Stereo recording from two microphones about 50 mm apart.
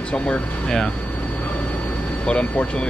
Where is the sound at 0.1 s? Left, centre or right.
Centre.